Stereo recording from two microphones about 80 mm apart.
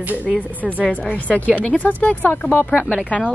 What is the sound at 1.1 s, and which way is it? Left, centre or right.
A woman's voice, centre.